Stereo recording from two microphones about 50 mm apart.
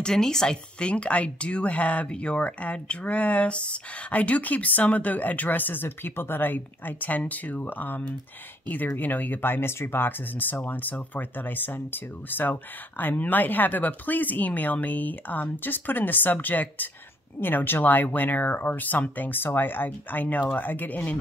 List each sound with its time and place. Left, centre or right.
0.0 s a woman's voice: centre; by 21.2 s left